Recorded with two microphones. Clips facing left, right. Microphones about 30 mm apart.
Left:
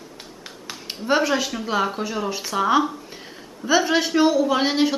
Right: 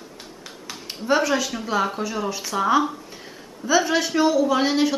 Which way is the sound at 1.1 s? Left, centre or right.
Centre.